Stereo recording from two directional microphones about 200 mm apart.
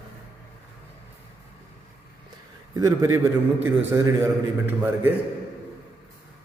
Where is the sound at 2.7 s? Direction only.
15° right (ahead or behind).